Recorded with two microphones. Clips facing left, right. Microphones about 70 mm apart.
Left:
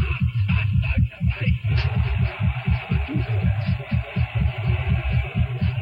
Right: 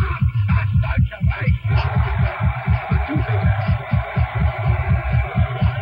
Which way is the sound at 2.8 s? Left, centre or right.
Right.